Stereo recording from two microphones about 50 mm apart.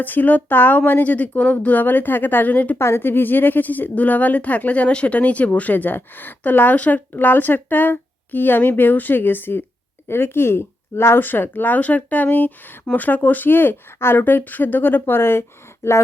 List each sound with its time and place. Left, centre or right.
0.0 s speech: left
2.7 s speech: left